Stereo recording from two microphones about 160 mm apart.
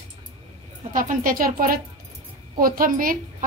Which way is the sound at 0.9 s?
55° right (ahead or behind).